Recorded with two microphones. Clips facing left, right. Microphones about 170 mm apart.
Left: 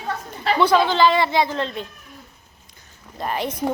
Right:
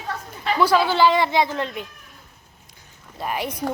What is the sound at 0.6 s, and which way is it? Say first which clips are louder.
Speech: left 1 dB; 5° right (ahead or behind).